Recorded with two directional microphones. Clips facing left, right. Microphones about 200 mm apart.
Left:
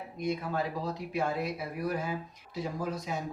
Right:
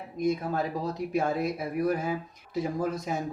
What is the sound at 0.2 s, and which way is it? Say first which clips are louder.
Speech: right 4 dB; 45° right (ahead or behind).